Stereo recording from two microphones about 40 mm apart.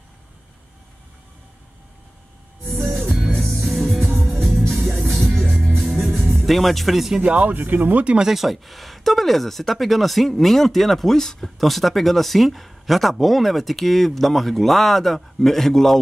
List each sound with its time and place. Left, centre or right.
3.3 s music: centre
6.0 s music: centre
7.2 s speech: right
7.4 s speech: right
8.2 s speech: centre
11.5 s speech: centre